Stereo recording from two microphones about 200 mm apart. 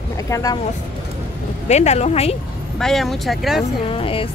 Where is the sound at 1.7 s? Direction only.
35° left (ahead or behind).